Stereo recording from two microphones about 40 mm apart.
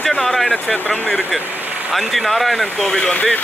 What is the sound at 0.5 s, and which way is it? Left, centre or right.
Speech, left.